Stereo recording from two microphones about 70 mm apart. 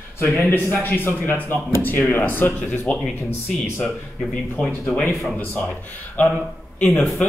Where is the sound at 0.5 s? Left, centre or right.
Left.